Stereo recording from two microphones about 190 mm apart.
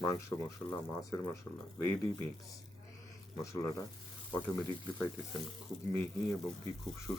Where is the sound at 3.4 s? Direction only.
15° left (ahead or behind).